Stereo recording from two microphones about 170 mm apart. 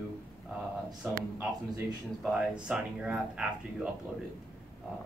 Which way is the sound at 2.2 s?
5° right (ahead or behind).